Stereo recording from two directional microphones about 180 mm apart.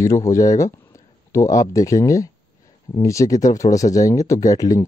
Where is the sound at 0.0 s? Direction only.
15° left (ahead or behind).